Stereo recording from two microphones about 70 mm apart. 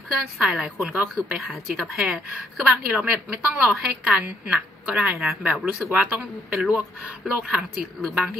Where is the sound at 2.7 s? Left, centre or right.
Centre.